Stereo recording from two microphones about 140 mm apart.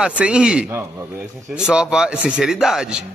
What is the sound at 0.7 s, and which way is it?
Speech, 20° right (ahead or behind).